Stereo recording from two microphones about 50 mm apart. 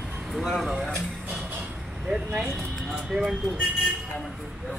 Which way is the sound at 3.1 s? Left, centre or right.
Centre.